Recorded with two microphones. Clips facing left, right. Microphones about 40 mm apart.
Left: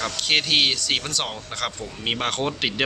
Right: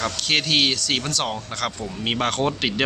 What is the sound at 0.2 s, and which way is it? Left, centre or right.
A man's voice, centre.